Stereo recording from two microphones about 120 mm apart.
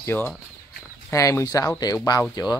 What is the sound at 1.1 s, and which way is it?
Speech, 25° left (ahead or behind).